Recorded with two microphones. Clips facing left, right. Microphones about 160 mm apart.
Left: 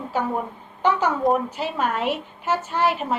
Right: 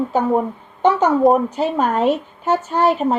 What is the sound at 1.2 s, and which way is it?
Speech, 35° right (ahead or behind).